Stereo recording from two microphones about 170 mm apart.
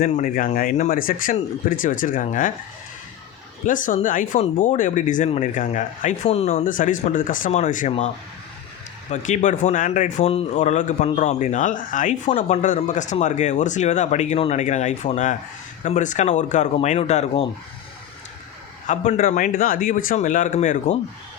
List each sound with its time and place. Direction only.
0.0 s speech: 50° left (ahead or behind)
3.7 s speech: 50° left (ahead or behind)
6.2 s speech: 40° left (ahead or behind)
6.7 s speech: 50° left (ahead or behind)
18.9 s speech: 45° left (ahead or behind)